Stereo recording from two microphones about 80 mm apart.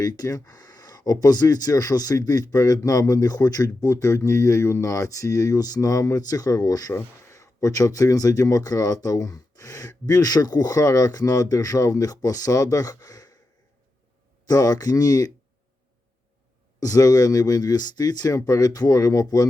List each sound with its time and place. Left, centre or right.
0.0 s speech: left
6.9 s speech: left
14.4 s speech: left
16.8 s speech: left